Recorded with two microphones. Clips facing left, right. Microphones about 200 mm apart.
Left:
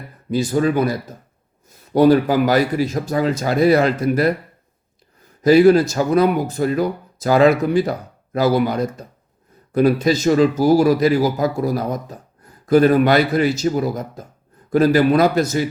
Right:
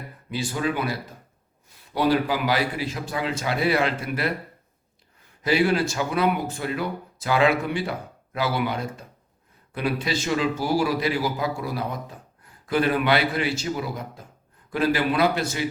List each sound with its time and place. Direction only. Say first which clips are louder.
0.3 s speech: left 9 dB; 40° left (ahead or behind)
5.4 s a man's voice: left 10 dB; 40° left (ahead or behind)